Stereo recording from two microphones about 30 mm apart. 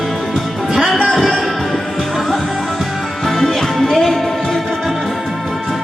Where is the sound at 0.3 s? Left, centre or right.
Centre.